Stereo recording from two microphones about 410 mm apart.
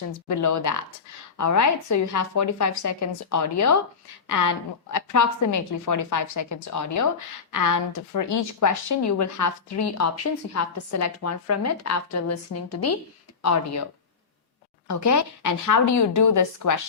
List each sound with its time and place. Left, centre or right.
0.3 s a woman's voice: left
14.8 s a woman's voice: left